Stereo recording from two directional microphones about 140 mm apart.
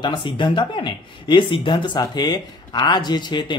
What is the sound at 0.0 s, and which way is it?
Speech, 35° left (ahead or behind).